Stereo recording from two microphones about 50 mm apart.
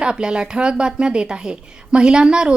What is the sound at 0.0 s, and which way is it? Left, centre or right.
A woman's voice, centre.